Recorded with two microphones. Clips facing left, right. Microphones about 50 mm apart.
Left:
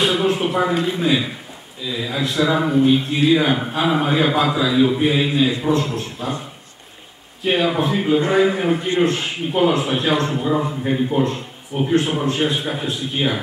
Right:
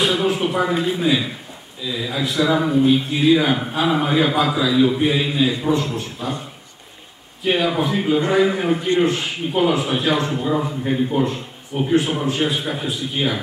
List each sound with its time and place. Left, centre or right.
0.0 s a sound: centre
1.8 s a man's voice: centre
7.4 s a man's voice: centre